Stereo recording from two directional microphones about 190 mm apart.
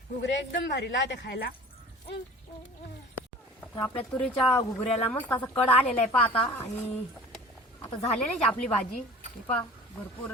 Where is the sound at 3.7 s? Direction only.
25° left (ahead or behind).